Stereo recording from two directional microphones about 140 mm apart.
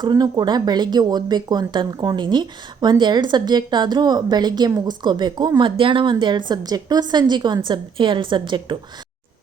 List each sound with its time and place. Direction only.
0.0 s a woman's voice: 30° right (ahead or behind)